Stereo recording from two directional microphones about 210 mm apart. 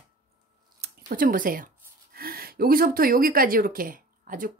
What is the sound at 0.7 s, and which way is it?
Speech, 45° right (ahead or behind).